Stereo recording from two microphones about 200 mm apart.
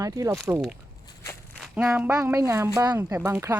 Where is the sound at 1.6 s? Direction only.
5° right (ahead or behind).